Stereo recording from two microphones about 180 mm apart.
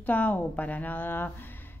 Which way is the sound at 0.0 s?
10° left (ahead or behind).